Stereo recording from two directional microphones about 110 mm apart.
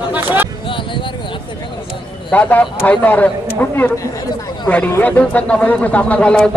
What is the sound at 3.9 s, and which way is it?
Speech, 30° left (ahead or behind).